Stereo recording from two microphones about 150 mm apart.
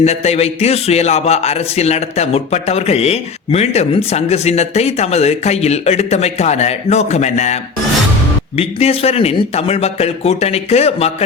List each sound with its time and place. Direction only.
0.0 s a man's voice: 45° left (ahead or behind)